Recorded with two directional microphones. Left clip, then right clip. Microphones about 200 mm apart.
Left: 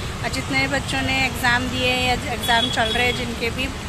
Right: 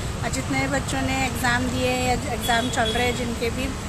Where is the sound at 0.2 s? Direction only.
5° right (ahead or behind).